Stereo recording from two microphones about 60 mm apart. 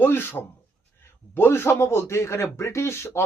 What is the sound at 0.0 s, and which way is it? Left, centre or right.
A man's voice, left.